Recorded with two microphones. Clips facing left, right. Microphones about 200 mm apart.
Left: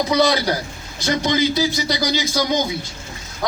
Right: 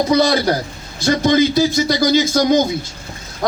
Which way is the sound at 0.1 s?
50° right (ahead or behind).